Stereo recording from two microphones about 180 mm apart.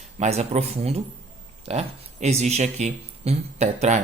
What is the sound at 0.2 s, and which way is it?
Speech, 40° right (ahead or behind).